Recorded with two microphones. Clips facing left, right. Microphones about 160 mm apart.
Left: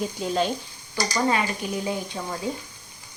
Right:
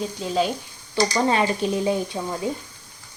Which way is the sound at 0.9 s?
25° right (ahead or behind).